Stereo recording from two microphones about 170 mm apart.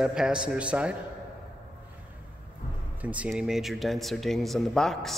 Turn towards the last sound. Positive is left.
turn(degrees=0)  # may be behind; listen again after turning